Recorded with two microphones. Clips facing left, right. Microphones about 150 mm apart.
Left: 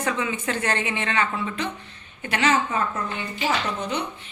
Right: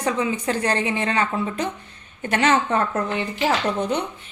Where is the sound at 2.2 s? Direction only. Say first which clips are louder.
Right 3 dB; 50° right (ahead or behind); by 3.4 s 65° right (ahead or behind).